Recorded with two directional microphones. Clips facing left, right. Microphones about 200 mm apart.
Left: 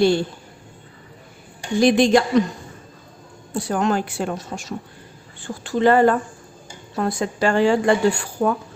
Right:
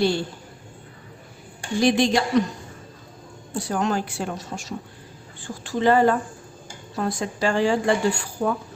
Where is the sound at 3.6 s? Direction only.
55° left (ahead or behind).